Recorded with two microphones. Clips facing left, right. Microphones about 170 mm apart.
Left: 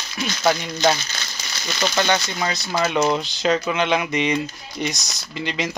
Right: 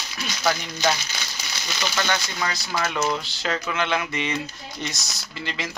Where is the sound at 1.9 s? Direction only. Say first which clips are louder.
Left 5 dB; 25° left (ahead or behind).